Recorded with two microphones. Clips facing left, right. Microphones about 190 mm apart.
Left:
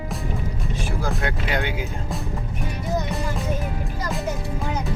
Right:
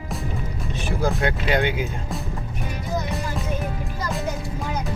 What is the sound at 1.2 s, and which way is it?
Speech, 20° right (ahead or behind).